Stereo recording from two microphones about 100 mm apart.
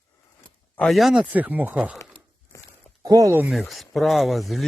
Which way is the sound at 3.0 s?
35° right (ahead or behind).